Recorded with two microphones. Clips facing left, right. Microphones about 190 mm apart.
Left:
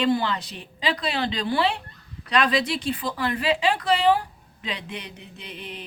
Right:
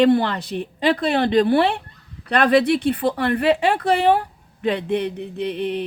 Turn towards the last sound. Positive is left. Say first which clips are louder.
# right 15 dB
turn(degrees=-60)  # may be behind; listen again after turning